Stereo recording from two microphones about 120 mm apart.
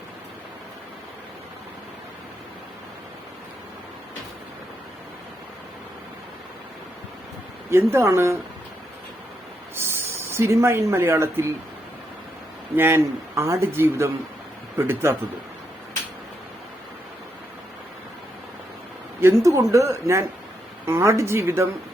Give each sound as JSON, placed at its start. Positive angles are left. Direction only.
{"t": 7.7, "sound": "speech", "side_deg": -20}
{"t": 9.7, "sound": "speech", "side_deg": -20}
{"t": 12.7, "sound": "speech", "side_deg": -20}
{"t": 19.2, "sound": "speech", "side_deg": -25}